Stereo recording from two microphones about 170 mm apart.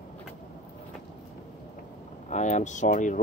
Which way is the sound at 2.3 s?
45° left (ahead or behind).